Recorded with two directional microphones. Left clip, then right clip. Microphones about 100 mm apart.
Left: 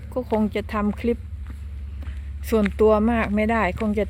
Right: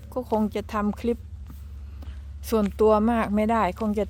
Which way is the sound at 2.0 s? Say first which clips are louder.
Left 3 dB; 20° right (ahead or behind).